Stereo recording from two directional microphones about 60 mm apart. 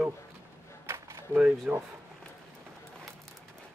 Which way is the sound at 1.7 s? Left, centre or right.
Centre.